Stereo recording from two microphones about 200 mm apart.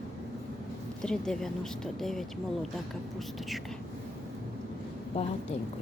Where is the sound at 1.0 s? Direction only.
5° left (ahead or behind).